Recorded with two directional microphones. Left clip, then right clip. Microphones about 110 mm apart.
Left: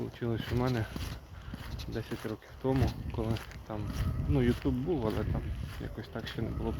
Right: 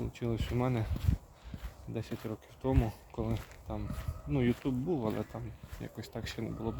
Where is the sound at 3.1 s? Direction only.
25° right (ahead or behind).